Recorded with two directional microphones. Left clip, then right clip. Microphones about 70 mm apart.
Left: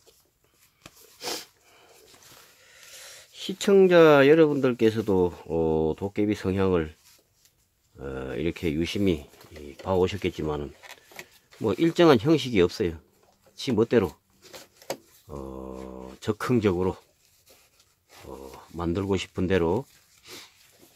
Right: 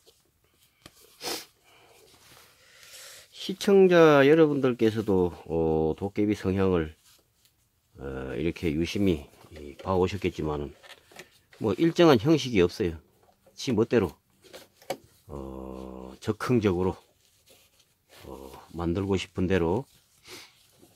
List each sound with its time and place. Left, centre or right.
1.2 s a sound: right
2.6 s speech: centre
8.0 s speech: centre
15.2 s speech: centre
18.6 s speech: centre